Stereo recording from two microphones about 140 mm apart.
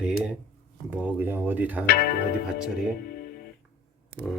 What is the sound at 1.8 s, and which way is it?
Speech, 90° left.